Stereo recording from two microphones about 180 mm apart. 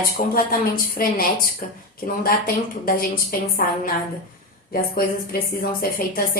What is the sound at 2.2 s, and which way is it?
A woman's voice, 55° left (ahead or behind).